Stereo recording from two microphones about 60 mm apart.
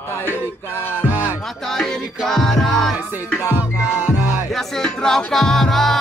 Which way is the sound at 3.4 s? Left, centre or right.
Right.